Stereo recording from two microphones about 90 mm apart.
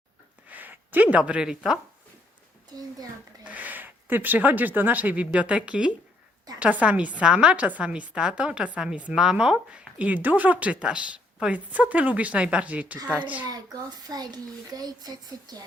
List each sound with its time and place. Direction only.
0.4 s speech: 20° right (ahead or behind)
3.4 s a woman's voice: 15° right (ahead or behind)
13.4 s a child's voice: 45° right (ahead or behind)